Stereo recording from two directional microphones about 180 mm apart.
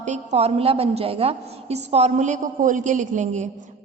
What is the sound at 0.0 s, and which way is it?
A woman's voice, 40° right (ahead or behind).